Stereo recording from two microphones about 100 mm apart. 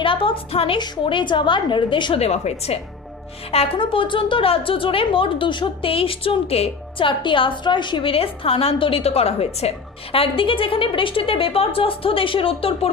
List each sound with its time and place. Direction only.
0.0 s a woman's voice: 60° left (ahead or behind)
0.8 s a woman's voice: 55° left (ahead or behind)
2.1 s a woman's voice: 90° left
3.5 s a woman's voice: 80° left